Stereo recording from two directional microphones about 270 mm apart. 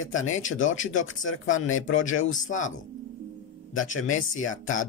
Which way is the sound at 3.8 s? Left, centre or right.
Left.